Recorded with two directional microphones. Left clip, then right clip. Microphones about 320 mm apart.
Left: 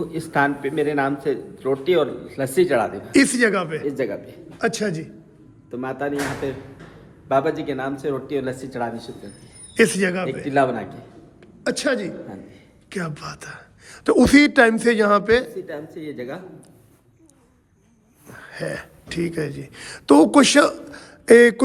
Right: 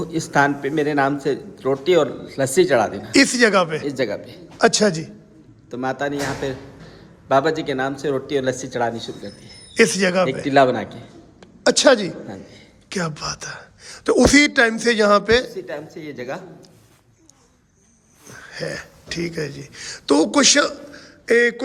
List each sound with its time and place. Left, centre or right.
0.0 s a man's voice: right
3.1 s speech: centre
3.8 s a man's voice: right
4.5 s a man's voice: centre
5.7 s a man's voice: right
9.7 s speech: centre
10.4 s a man's voice: right
11.6 s a man's voice: centre
15.6 s a man's voice: right
18.3 s speech: centre